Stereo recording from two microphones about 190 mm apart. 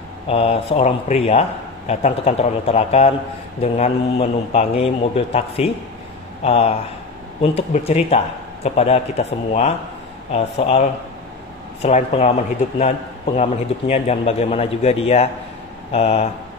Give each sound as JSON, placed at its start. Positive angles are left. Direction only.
{"t": 0.3, "sound": "a man's voice", "side_deg": 30}